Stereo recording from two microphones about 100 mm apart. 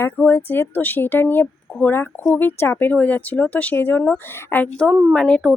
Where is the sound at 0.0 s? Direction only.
20° left (ahead or behind).